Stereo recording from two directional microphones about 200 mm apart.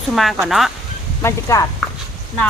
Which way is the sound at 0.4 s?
Centre (ahead or behind).